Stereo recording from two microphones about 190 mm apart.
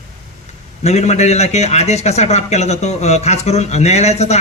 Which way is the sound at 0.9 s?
35° left (ahead or behind).